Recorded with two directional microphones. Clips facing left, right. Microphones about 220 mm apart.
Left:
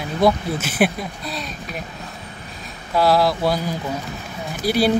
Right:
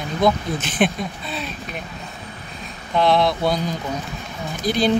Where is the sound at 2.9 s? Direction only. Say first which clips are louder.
Left 1 dB; 5° left (ahead or behind).